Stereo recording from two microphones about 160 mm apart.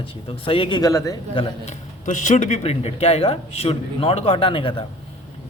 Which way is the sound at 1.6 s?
50° left (ahead or behind).